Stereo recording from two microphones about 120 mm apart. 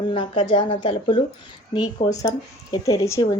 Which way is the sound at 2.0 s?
30° left (ahead or behind).